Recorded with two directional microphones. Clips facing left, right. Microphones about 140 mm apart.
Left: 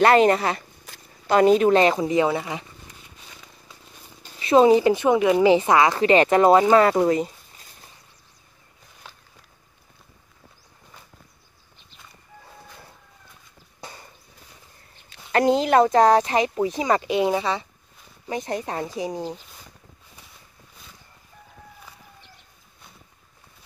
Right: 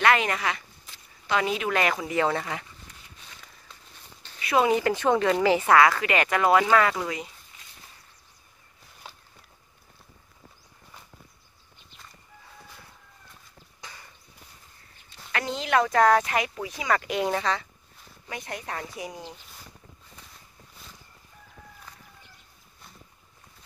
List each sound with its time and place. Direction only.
0.0 s speech: 35° left (ahead or behind)
0.8 s speech: 45° left (ahead or behind); by 2.2 s 25° left (ahead or behind)
2.2 s speech: 15° left (ahead or behind)
4.4 s speech: 30° left (ahead or behind)
13.7 s a sound: 30° left (ahead or behind)
15.3 s speech: 40° left (ahead or behind)
15.9 s speech: 25° left (ahead or behind)
18.2 s speech: 30° left (ahead or behind)